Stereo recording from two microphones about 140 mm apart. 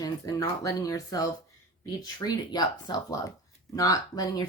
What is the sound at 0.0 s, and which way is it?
Speech, 20° left (ahead or behind).